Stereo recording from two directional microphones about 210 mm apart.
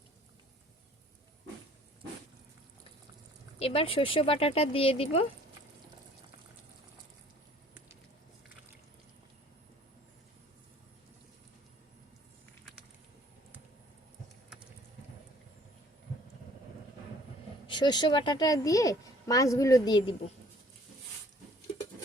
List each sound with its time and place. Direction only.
3.6 s speech: 25° left (ahead or behind)
17.7 s speech: 20° left (ahead or behind)